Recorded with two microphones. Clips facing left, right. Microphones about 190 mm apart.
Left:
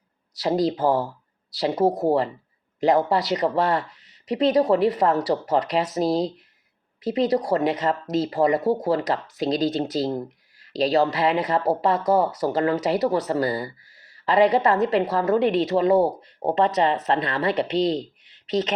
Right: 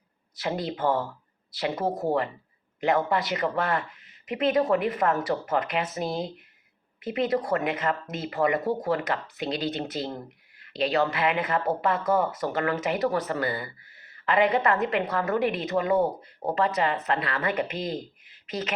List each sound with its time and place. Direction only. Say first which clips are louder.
0.3 s speech: left 8 dB; 35° left (ahead or behind)